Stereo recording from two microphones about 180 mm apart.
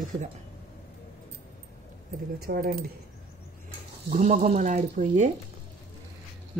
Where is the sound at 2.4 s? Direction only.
60° right (ahead or behind).